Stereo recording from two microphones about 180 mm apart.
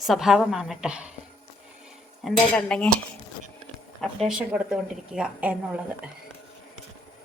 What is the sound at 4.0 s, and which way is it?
A woman's voice, centre (ahead or behind).